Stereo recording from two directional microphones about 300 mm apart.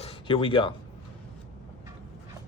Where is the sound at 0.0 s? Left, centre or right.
Centre.